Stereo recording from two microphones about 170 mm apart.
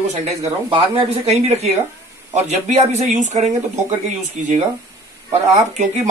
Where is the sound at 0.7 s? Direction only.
35° right (ahead or behind).